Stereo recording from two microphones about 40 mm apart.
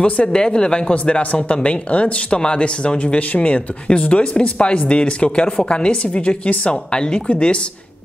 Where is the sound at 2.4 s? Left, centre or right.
Left.